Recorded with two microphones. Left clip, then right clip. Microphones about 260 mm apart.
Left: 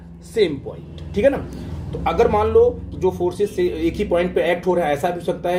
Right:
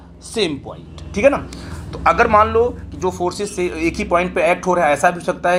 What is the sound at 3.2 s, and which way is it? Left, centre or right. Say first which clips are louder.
Speech: right 1 dB; right.